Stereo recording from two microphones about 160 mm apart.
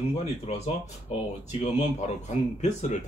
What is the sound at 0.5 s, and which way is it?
Speech, 45° left (ahead or behind).